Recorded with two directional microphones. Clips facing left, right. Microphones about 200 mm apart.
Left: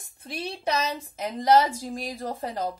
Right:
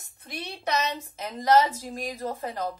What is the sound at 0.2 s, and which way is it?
Speech, 30° left (ahead or behind).